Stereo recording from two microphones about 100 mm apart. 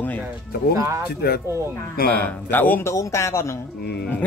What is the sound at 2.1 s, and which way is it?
Speech, 15° left (ahead or behind).